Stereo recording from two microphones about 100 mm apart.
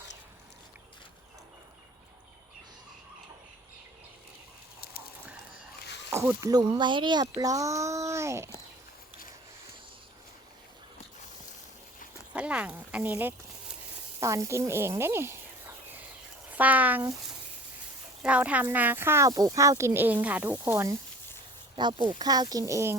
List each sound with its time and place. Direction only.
6.1 s speech: 30° right (ahead or behind)
6.7 s a child's voice: 50° right (ahead or behind); by 8.4 s 30° right (ahead or behind)
12.3 s speech: 10° right (ahead or behind)
14.2 s a sound: 30° right (ahead or behind)
16.5 s speech: 15° right (ahead or behind)
18.2 s speech: 15° right (ahead or behind); by 21.0 s 30° right (ahead or behind)
21.8 s a child's voice: 50° right (ahead or behind); by 23.0 s 30° right (ahead or behind)